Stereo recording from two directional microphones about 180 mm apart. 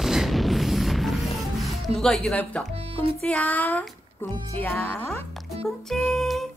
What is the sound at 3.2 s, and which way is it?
Speech, 5° left (ahead or behind).